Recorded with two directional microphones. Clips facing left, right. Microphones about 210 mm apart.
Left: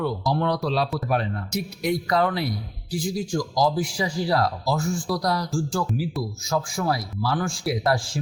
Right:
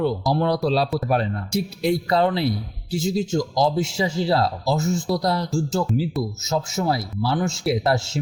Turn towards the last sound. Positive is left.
turn(degrees=-25)  # may be behind; listen again after turning